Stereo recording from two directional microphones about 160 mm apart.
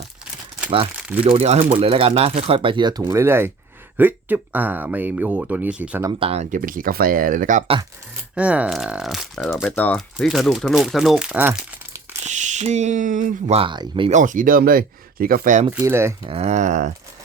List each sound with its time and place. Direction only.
1.2 s speech: 35° right (ahead or behind); by 6.0 s 10° right (ahead or behind)
6.1 s speech: 40° right (ahead or behind)
6.6 s speech: 60° right (ahead or behind)
8.4 s speech: 10° right (ahead or behind)
12.2 s speech: 50° right (ahead or behind)
13.6 s speech: 30° right (ahead or behind)
14.1 s speech: 55° right (ahead or behind)
15.8 s speech: 15° right (ahead or behind)
16.2 s speech: 40° right (ahead or behind)